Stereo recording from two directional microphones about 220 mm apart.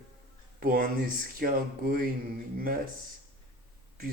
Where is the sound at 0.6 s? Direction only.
40° right (ahead or behind).